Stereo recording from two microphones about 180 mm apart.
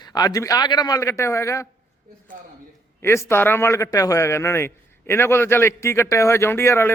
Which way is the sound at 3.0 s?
15° left (ahead or behind).